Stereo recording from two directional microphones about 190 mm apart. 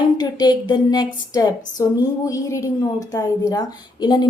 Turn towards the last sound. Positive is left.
turn(degrees=20)  # may be behind; listen again after turning